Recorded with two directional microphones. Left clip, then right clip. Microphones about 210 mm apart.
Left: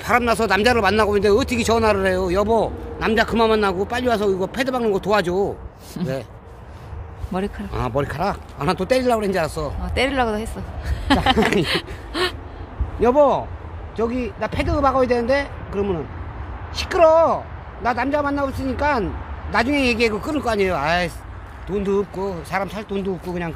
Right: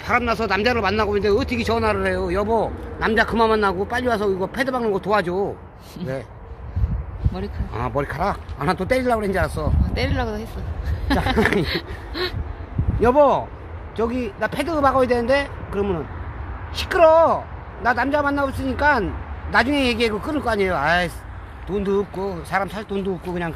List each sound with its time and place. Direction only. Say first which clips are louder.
0.0 s a man's voice: left 2 dB; 50° left (ahead or behind); by 6.2 s 30° left (ahead or behind)
7.7 s speech: even; 35° left (ahead or behind)
9.9 s speech: left 7 dB; 15° left (ahead or behind)